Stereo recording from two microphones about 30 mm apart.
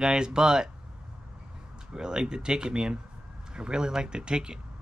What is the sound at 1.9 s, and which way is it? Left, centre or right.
Speech, right.